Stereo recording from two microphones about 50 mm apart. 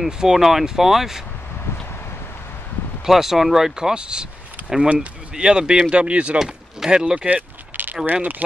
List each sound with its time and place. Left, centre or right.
0.0 s speech: centre
3.1 s speech: centre; by 6.3 s right
6.3 s speech: centre
7.2 s a sound: right
8.1 s speech: right